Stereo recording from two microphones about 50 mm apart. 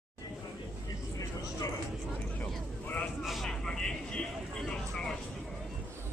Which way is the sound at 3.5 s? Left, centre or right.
Centre.